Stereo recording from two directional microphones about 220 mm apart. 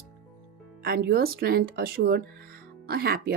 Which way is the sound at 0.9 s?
45° right (ahead or behind).